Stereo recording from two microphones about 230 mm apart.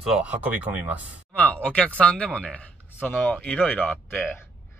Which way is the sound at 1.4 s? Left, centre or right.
Centre.